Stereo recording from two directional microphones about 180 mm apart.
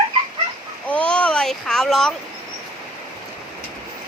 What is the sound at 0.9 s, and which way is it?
Speech, 5° left (ahead or behind).